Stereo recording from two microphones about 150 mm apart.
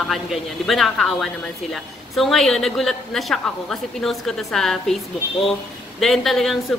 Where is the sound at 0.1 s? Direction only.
Centre (ahead or behind).